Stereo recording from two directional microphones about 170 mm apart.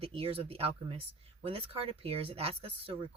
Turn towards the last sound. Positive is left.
turn(degrees=-35)  # may be behind; listen again after turning